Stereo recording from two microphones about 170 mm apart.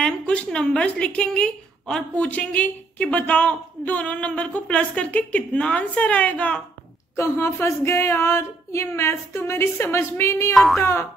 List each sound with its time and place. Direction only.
0.0 s speech: 5° left (ahead or behind)
10.5 s speech: centre (ahead or behind)
10.8 s speech: 20° left (ahead or behind)